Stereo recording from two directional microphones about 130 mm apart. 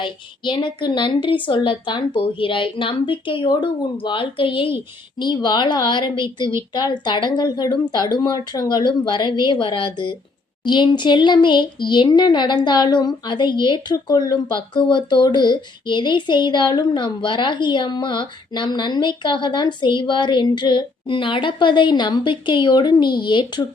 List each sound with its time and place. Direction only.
0.0 s speech: 40° left (ahead or behind)